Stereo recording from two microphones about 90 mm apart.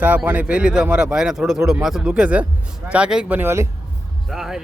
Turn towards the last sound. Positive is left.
turn(degrees=-5)  # may be behind; listen again after turning